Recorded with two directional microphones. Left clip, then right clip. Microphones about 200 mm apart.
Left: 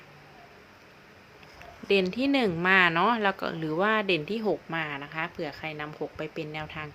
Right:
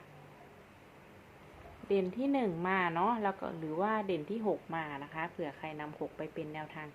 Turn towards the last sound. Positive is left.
turn(degrees=25)  # may be behind; listen again after turning